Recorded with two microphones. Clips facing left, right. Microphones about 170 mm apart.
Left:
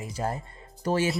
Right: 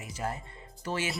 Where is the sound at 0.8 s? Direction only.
40° left (ahead or behind).